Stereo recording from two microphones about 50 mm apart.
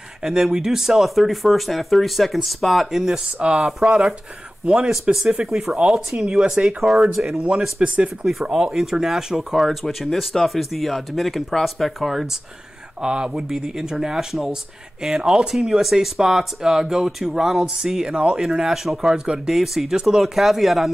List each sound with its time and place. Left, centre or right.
0.2 s speech: centre
3.0 s speech: centre
5.3 s speech: centre
6.8 s speech: centre
7.3 s speech: centre
8.3 s speech: centre
13.0 s speech: centre